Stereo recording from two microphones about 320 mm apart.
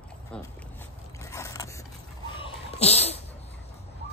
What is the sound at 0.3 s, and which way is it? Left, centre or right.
Biting, centre.